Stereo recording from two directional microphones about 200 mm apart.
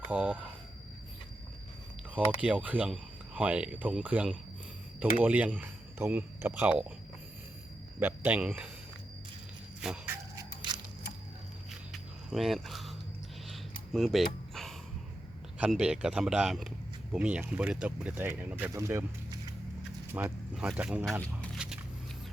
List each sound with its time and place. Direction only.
0.1 s speech: 5° right (ahead or behind)
2.1 s speech: 5° right (ahead or behind)
7.9 s speech: 10° right (ahead or behind)
9.8 s dog: 5° right (ahead or behind)
10.3 s biting: 20° right (ahead or behind)
11.7 s walk: centre (ahead or behind)
13.9 s a sound: centre (ahead or behind)
15.5 s speech: 5° right (ahead or behind)
20.1 s speech: 5° right (ahead or behind)